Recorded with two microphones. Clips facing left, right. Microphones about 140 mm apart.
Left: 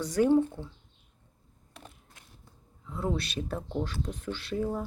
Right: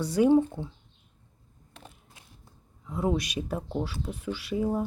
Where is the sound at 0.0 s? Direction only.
10° right (ahead or behind).